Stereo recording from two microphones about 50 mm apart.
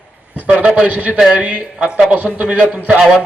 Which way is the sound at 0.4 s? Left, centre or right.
Right.